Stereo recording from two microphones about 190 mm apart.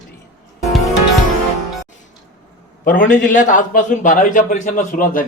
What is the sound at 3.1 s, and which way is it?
Speech, 45° left (ahead or behind).